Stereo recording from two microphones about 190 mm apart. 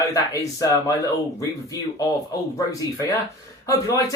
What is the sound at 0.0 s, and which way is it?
Speech, 15° left (ahead or behind).